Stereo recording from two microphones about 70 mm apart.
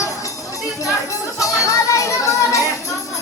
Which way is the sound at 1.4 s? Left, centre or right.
Left.